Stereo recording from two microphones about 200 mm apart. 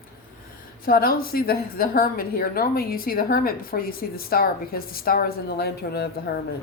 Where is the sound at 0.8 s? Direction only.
45° left (ahead or behind).